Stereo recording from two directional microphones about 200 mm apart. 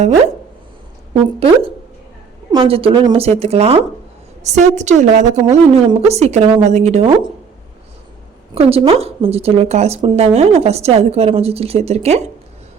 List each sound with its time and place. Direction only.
1.1 s a woman's voice: 30° right (ahead or behind)
8.5 s a woman's voice: 30° right (ahead or behind)